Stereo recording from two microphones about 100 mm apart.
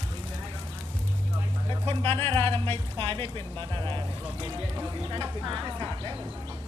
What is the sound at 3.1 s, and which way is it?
Speech, 65° right (ahead or behind).